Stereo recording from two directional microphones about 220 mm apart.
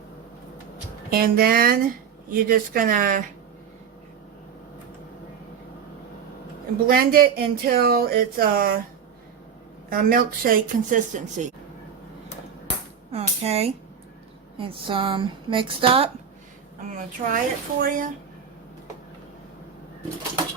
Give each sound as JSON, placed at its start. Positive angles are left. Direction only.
{"t": 1.1, "sound": "speech", "side_deg": -40}
{"t": 6.8, "sound": "speech", "side_deg": -40}
{"t": 9.9, "sound": "speech", "side_deg": -40}
{"t": 13.1, "sound": "a sound", "side_deg": -30}
{"t": 14.6, "sound": "a woman's voice", "side_deg": -25}
{"t": 17.0, "sound": "speech", "side_deg": -35}